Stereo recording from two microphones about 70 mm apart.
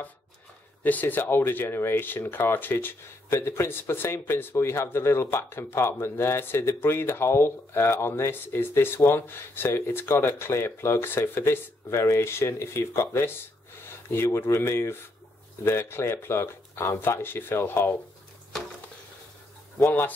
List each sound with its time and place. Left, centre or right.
0.8 s speech: left